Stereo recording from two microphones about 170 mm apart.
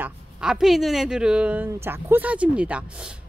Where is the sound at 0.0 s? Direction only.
5° right (ahead or behind).